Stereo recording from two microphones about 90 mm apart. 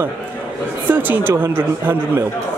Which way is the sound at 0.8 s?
20° right (ahead or behind).